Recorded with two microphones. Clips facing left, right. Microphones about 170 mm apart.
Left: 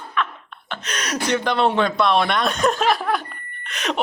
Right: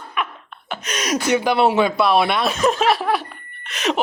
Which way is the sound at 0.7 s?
10° right (ahead or behind).